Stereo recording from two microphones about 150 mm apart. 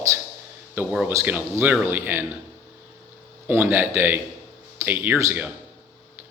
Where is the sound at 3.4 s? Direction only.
15° right (ahead or behind).